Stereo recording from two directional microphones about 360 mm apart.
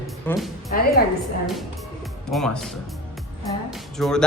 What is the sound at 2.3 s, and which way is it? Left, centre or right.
Speech, centre.